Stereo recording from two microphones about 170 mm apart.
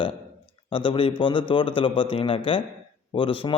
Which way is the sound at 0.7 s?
30° left (ahead or behind).